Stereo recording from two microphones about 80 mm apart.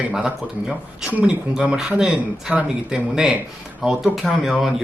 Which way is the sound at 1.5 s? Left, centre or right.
Centre.